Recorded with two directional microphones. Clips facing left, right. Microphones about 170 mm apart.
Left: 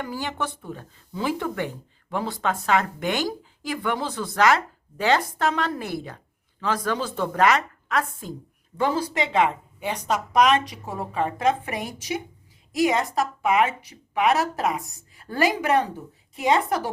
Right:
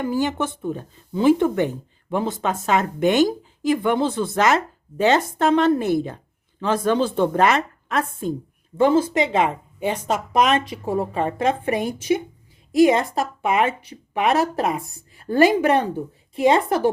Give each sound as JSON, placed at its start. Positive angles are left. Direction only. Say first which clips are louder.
{"t": 0.0, "sound": "speech", "louder": "right 7 dB", "side_deg": -20}